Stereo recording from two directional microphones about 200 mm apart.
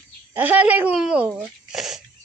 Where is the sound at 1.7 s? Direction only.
Centre (ahead or behind).